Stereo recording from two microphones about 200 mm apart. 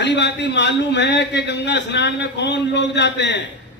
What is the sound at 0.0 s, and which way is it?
A man's voice, 60° left (ahead or behind).